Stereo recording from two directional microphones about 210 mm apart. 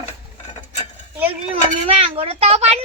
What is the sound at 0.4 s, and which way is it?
Mechanisms, 35° left (ahead or behind).